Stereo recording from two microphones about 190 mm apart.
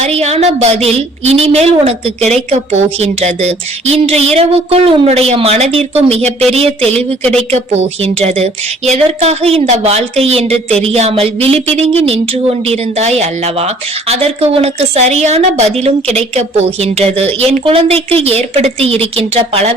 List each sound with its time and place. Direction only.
0.0 s a woman's voice: 35° right (ahead or behind)
7.5 s a woman's voice: 35° right (ahead or behind)